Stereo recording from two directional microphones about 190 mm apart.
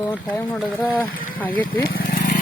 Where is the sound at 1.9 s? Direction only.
50° left (ahead or behind).